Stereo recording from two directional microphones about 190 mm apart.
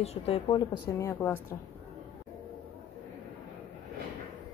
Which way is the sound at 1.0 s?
15° left (ahead or behind).